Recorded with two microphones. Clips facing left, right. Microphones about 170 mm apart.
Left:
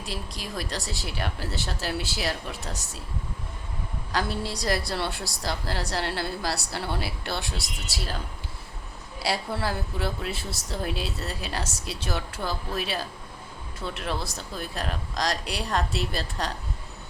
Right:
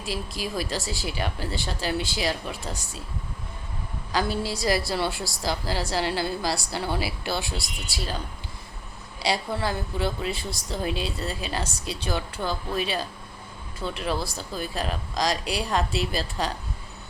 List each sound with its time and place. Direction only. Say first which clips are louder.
0.0 s a woman's voice: right 4 dB; centre (ahead or behind)
4.1 s a woman's voice: right 3 dB; centre (ahead or behind)